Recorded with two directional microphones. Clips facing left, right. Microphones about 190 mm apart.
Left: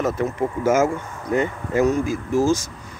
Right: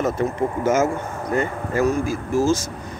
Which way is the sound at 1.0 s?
50° right (ahead or behind).